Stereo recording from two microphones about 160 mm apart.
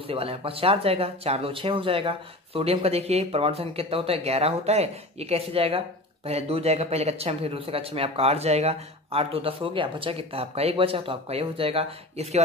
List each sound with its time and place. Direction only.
0.1 s speech: 35° right (ahead or behind)